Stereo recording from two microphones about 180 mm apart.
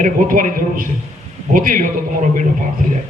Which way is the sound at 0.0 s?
45° right (ahead or behind).